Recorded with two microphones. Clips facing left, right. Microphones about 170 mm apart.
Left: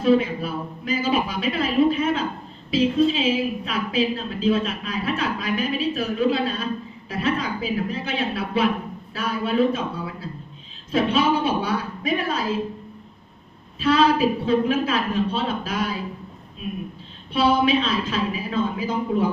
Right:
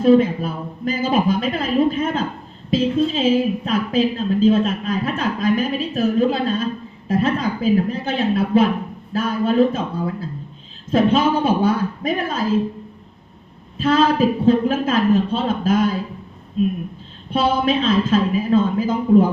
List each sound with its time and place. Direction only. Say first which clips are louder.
0.0 s a woman's voice: right 5 dB; 50° right (ahead or behind)
13.7 s a woman's voice: right 2 dB; 50° right (ahead or behind)
17.3 s a woman's voice: right 1 dB; 50° right (ahead or behind)